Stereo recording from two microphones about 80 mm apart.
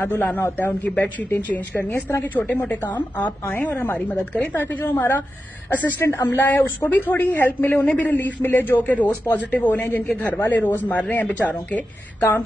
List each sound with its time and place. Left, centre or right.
0.0 s a woman's voice: left